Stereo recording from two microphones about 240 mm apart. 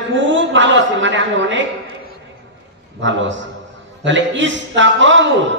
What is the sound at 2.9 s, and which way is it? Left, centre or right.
A man's voice, right.